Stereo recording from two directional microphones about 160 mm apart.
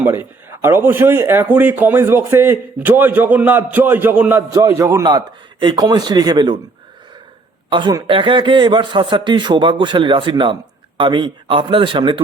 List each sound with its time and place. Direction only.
0.0 s speech: 15° right (ahead or behind)
7.7 s speech: 30° right (ahead or behind)